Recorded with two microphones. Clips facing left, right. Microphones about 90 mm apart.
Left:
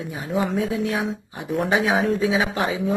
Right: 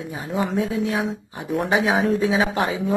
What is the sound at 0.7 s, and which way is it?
Speech, 25° right (ahead or behind).